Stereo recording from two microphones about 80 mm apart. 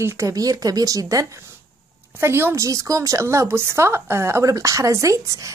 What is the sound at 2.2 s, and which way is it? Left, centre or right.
A woman's voice, right.